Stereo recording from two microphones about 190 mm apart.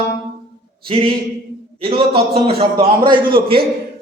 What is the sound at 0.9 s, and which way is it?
A man's voice, 30° right (ahead or behind).